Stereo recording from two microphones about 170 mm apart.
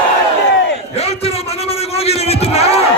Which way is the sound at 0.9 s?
40° left (ahead or behind).